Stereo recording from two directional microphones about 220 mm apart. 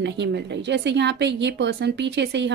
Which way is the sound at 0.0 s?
50° right (ahead or behind).